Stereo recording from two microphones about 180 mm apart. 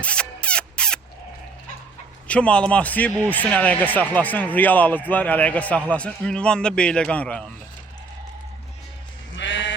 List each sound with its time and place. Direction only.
0.0 s a sound: 5° left (ahead or behind)
2.2 s a man's voice: 5° left (ahead or behind)
9.3 s sheep: 90° left